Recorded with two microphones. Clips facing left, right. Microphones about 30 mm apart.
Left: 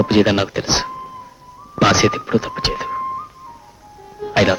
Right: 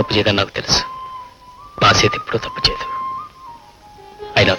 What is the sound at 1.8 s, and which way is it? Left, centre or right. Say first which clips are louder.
Speech: right 1 dB; right.